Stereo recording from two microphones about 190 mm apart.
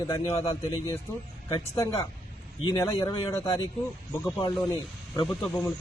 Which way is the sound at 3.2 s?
15° left (ahead or behind).